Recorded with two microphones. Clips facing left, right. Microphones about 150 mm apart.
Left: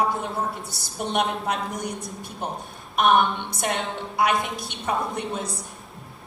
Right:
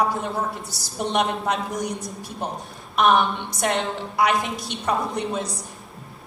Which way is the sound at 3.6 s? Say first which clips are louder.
Right 4 dB; centre (ahead or behind).